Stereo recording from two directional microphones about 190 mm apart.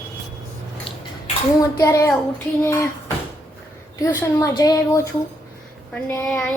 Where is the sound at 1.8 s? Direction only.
15° left (ahead or behind).